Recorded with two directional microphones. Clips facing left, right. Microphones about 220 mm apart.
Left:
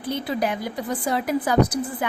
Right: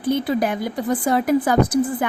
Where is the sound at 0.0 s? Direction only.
50° right (ahead or behind).